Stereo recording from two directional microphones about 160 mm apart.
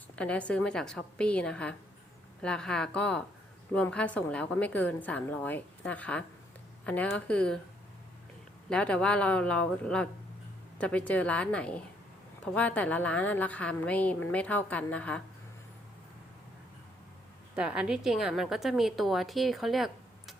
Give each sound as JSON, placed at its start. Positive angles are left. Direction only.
{"t": 0.2, "sound": "a woman's voice", "side_deg": 10}
{"t": 8.7, "sound": "a woman's voice", "side_deg": 5}
{"t": 17.5, "sound": "a woman's voice", "side_deg": -5}